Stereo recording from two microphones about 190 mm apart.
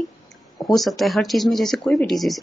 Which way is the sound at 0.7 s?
Centre (ahead or behind).